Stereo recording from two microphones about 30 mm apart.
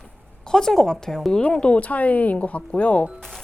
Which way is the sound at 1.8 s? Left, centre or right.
Left.